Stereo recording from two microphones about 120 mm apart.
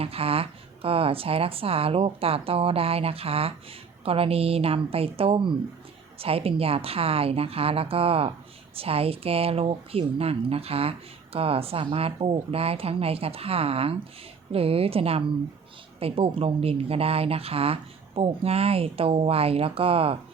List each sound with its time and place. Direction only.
0.0 s speech: 55° right (ahead or behind)